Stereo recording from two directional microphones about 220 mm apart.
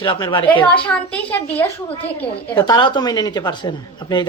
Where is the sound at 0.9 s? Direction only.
5° left (ahead or behind).